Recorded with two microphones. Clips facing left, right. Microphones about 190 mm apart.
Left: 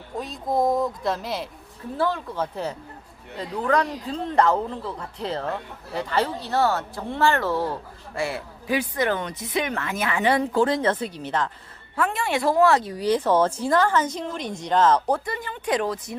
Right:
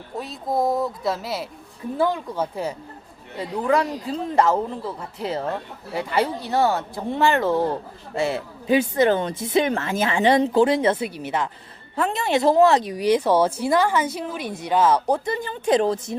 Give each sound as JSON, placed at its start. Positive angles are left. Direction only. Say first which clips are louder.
{"t": 0.2, "sound": "a man's voice", "louder": "even", "side_deg": -5}
{"t": 11.9, "sound": "a man's voice", "louder": "right 3 dB", "side_deg": -20}
{"t": 15.2, "sound": "speech", "louder": "right 5 dB", "side_deg": -25}